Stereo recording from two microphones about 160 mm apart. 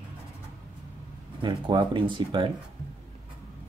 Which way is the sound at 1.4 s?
30° right (ahead or behind).